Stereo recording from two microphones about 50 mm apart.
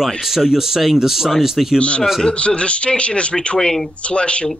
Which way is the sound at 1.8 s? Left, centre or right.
Left.